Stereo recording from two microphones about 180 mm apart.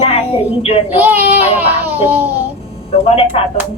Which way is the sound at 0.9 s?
10° right (ahead or behind).